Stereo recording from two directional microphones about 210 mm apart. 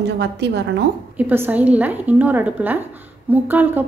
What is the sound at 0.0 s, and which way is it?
Speech, 55° right (ahead or behind).